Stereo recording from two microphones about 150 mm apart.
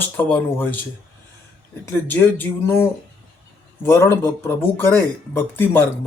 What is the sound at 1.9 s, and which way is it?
Speech, 15° left (ahead or behind).